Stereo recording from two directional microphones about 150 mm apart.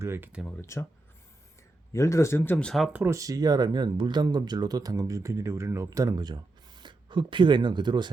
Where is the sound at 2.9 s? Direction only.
15° right (ahead or behind).